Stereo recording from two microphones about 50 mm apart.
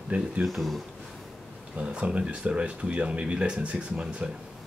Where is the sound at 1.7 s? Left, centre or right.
Right.